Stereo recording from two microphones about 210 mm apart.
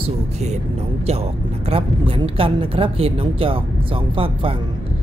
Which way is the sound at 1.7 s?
25° right (ahead or behind).